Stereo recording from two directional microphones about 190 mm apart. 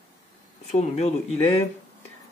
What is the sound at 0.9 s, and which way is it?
Speech, 35° left (ahead or behind).